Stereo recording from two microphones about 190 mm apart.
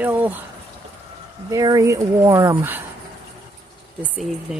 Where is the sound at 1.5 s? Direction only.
20° right (ahead or behind).